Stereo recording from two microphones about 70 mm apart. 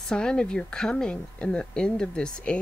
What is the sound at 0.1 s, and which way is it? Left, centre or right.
Speech, centre.